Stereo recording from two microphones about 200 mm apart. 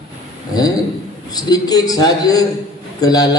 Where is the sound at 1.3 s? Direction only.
20° left (ahead or behind).